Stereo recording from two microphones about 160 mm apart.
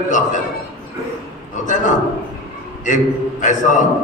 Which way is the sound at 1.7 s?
50° left (ahead or behind).